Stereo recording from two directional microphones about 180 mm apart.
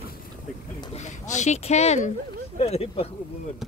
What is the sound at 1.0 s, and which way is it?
Speech, 40° left (ahead or behind).